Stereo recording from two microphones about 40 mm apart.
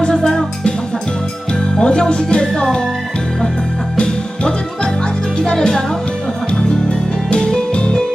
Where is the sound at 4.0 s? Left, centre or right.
Left.